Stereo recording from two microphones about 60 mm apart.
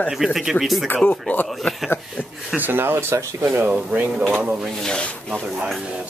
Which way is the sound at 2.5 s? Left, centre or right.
Right.